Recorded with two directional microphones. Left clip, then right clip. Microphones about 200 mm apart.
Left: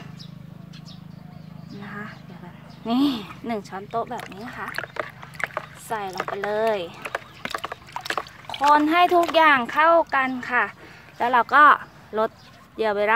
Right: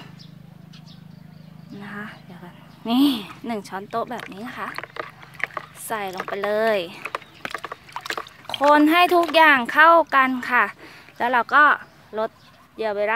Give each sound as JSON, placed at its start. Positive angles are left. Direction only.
{"t": 1.8, "sound": "speech", "side_deg": -30}
{"t": 3.9, "sound": "speech", "side_deg": -50}
{"t": 4.7, "sound": "rowboat", "side_deg": -5}
{"t": 5.9, "sound": "speech", "side_deg": -50}
{"t": 7.5, "sound": "a sound", "side_deg": -10}
{"t": 8.7, "sound": "speech", "side_deg": -45}
{"t": 11.4, "sound": "speech", "side_deg": -10}